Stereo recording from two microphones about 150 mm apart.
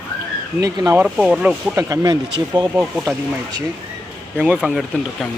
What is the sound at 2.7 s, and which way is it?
Speech, 5° right (ahead or behind).